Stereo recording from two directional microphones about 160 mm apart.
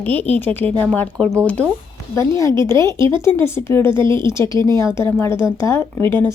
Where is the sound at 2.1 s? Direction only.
20° left (ahead or behind).